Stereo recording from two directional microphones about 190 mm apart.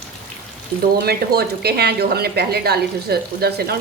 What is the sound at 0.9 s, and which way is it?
Speech, 55° right (ahead or behind).